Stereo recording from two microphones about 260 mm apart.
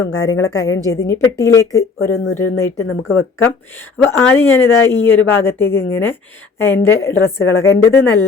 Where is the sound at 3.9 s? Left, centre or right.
Centre.